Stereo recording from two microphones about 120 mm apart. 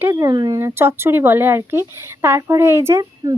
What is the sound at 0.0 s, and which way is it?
Speech, 25° right (ahead or behind).